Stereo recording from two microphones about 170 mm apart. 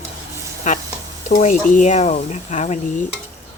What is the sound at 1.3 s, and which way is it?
Speech, 50° left (ahead or behind).